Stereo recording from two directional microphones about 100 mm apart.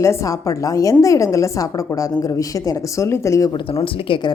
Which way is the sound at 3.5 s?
55° left (ahead or behind).